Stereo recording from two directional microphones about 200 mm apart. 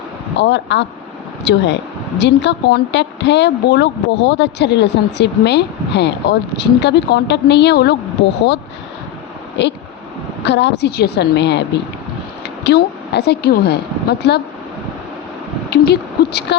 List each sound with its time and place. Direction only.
0.3 s speech: 60° left (ahead or behind)
9.6 s speech: 60° left (ahead or behind)
12.6 s speech: 55° left (ahead or behind)
15.7 s speech: 55° left (ahead or behind)